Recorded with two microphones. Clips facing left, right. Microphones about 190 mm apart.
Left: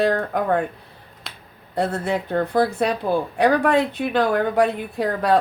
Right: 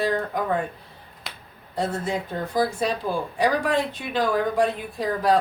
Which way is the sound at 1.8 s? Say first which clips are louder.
Left 4 dB; 60° left (ahead or behind).